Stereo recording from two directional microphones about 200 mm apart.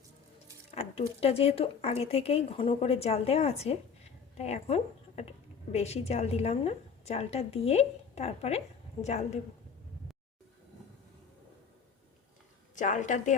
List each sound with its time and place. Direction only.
0.7 s speech: 30° left (ahead or behind)
12.7 s speech: 40° left (ahead or behind)